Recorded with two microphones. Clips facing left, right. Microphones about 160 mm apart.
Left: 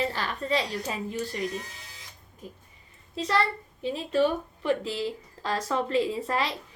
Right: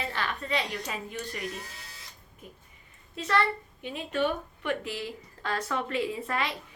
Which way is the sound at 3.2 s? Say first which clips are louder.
Left 1 dB; 30° left (ahead or behind).